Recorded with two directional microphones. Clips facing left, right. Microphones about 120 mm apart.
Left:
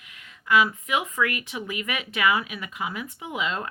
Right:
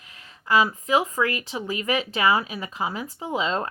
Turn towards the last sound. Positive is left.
turn(degrees=-30)  # may be behind; listen again after turning